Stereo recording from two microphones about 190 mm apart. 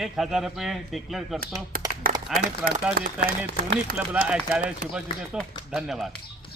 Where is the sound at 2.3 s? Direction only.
50° right (ahead or behind).